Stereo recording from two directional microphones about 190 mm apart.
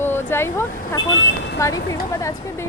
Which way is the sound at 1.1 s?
80° left.